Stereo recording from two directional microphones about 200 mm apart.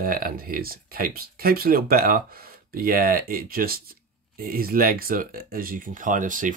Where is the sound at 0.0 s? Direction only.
45° right (ahead or behind).